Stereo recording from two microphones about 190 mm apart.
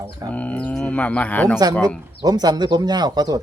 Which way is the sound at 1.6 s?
20° right (ahead or behind).